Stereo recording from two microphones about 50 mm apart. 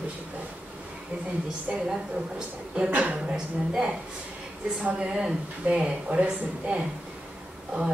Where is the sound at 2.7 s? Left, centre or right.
Right.